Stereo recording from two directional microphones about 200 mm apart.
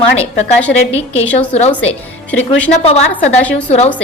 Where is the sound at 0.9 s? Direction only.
30° left (ahead or behind).